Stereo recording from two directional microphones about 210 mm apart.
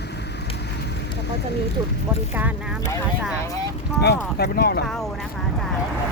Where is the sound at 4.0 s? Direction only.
50° left (ahead or behind).